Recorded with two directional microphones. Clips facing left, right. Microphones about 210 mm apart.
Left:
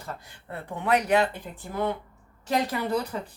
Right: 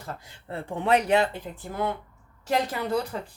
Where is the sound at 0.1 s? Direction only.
25° right (ahead or behind).